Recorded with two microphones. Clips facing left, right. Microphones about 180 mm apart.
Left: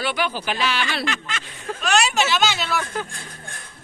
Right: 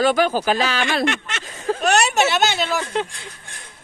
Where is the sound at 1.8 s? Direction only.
65° right (ahead or behind).